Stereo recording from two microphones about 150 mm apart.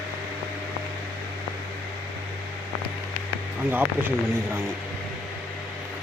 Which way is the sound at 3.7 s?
15° right (ahead or behind).